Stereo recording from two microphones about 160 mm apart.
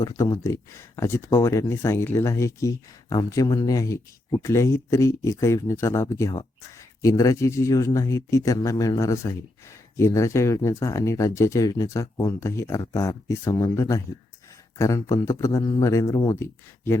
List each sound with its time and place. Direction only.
0.0 s speech: 20° left (ahead or behind)